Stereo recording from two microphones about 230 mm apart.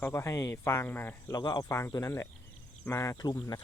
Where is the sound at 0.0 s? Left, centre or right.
Centre.